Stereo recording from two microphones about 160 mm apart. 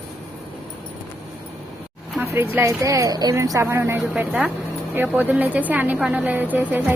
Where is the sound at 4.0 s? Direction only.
5° right (ahead or behind).